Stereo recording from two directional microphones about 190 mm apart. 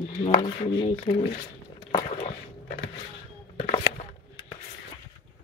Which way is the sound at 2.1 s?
40° left (ahead or behind).